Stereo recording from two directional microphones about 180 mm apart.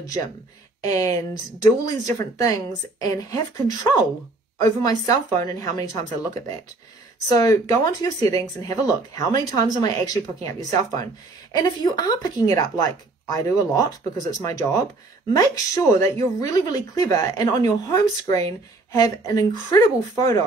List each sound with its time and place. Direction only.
0.8 s a woman's voice: 20° left (ahead or behind)